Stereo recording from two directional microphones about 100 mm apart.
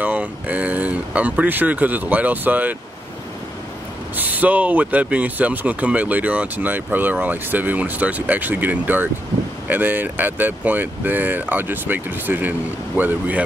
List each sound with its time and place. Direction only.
0.0 s speech: 15° right (ahead or behind)
4.2 s speech: 15° right (ahead or behind)